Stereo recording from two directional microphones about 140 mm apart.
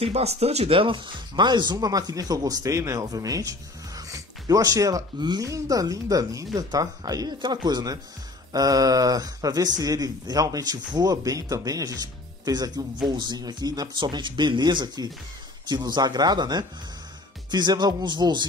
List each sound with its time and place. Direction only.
0.0 s speech: 50° right (ahead or behind); by 18.5 s 30° right (ahead or behind)